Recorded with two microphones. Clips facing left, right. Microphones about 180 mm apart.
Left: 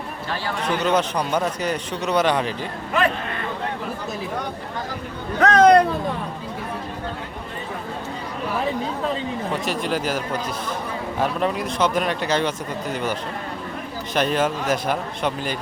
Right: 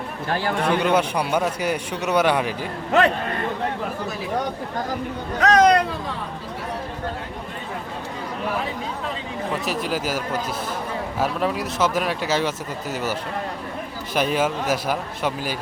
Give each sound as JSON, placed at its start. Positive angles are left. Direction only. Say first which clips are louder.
{"t": 0.3, "sound": "a man's voice", "louder": "right 5 dB", "side_deg": -55}
{"t": 0.8, "sound": "a man's voice", "louder": "right 1 dB", "side_deg": -10}
{"t": 5.4, "sound": "speech", "louder": "left 2 dB", "side_deg": 55}
{"t": 9.5, "sound": "speech", "louder": "even", "side_deg": -5}
{"t": 14.2, "sound": "a man's voice", "louder": "even", "side_deg": -5}